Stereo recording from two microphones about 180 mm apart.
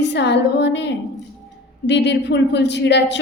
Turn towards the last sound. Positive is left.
turn(degrees=75)  # may be behind; listen again after turning